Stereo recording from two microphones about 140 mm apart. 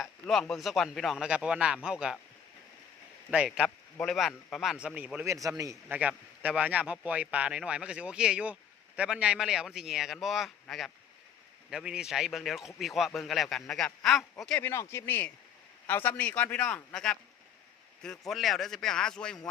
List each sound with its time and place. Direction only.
0.0 s speech: centre (ahead or behind)
3.3 s speech: 5° right (ahead or behind)
5.2 s speech: 20° right (ahead or behind)
5.9 s speech: 10° right (ahead or behind)
14.6 s a man's voice: 20° left (ahead or behind)
18.3 s speech: centre (ahead or behind)